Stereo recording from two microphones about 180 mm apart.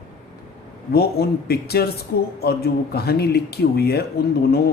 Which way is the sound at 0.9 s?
60° left (ahead or behind).